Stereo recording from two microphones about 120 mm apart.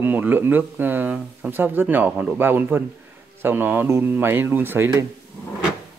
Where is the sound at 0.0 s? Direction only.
15° right (ahead or behind).